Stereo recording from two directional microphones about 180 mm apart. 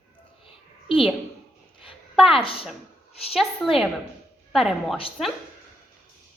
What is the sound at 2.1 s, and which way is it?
Speech, centre (ahead or behind).